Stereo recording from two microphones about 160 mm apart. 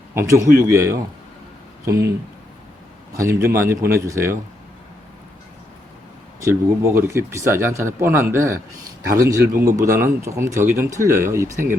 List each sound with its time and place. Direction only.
0.1 s a man's voice: 15° right (ahead or behind)
3.2 s speech: 15° right (ahead or behind)
6.4 s speech: 15° right (ahead or behind)